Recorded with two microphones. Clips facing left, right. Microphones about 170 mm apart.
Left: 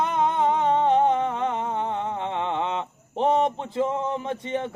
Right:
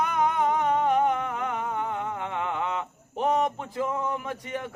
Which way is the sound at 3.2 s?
25° left (ahead or behind).